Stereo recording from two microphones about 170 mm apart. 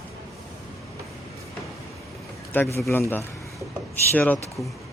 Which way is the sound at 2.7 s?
15° left (ahead or behind).